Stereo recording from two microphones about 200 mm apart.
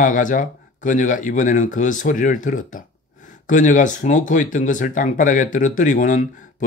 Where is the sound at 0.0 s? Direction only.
40° left (ahead or behind).